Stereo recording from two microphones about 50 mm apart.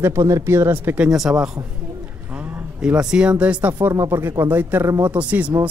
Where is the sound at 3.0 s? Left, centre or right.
Centre; by 4.0 s right.